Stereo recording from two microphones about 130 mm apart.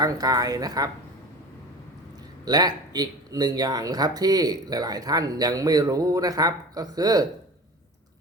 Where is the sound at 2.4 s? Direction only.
30° right (ahead or behind).